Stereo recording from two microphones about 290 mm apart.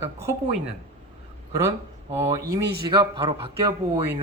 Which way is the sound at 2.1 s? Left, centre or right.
Centre.